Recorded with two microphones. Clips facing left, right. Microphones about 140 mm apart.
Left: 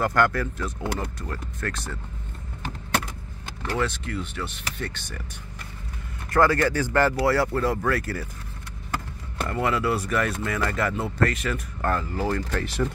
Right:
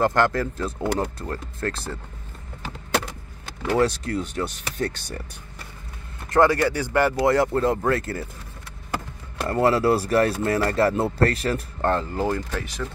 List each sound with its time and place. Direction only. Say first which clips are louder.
0.0 s speech: right 2 dB; 25° right (ahead or behind)
0.9 s speech: right 5 dB; 40° right (ahead or behind)
1.6 s speech: right 4 dB; 30° right (ahead or behind)
3.7 s speech: right 6 dB; 35° right (ahead or behind)
6.3 s speech: right 2 dB; 20° right (ahead or behind)
9.5 s speech: right 6 dB; 35° right (ahead or behind)
12.3 s speech: even; 15° right (ahead or behind)